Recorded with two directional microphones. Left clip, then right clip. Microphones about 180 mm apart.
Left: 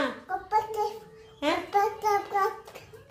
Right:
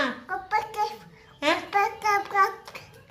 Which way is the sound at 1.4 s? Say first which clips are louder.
Right 2 dB; 25° left (ahead or behind).